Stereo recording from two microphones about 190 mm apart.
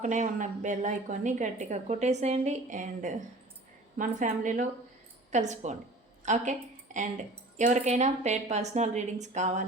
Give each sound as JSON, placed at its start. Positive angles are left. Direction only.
{"t": 0.0, "sound": "a woman's voice", "side_deg": -40}